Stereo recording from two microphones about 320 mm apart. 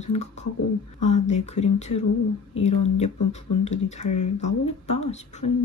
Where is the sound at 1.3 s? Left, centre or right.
Left.